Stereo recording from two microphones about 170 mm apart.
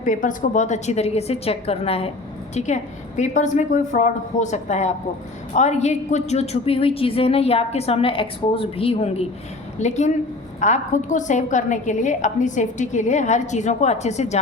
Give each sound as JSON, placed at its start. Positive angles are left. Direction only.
{"t": 0.0, "sound": "a woman's voice", "side_deg": 50}